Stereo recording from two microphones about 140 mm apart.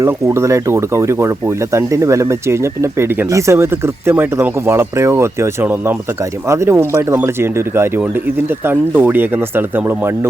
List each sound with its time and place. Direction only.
0.0 s speech: 20° right (ahead or behind)
8.6 s speech: 15° right (ahead or behind)